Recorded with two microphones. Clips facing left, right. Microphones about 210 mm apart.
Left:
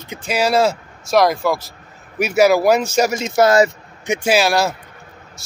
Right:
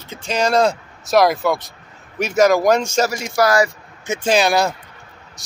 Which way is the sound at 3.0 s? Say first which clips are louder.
Left 3 dB; 20° left (ahead or behind).